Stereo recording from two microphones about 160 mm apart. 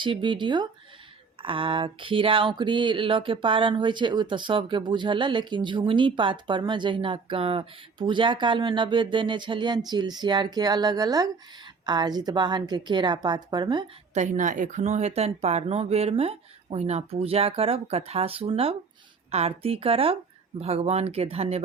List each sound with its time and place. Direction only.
0.0 s speech: 30° right (ahead or behind)
1.4 s a sound: 35° right (ahead or behind)
14.1 s speech: 50° right (ahead or behind)